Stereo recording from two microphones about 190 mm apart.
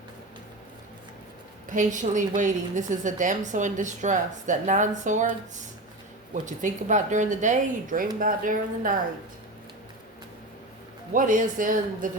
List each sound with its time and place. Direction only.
1.7 s a woman's voice: 40° right (ahead or behind)
6.3 s a woman's voice: 40° right (ahead or behind)
11.1 s speech: 45° right (ahead or behind)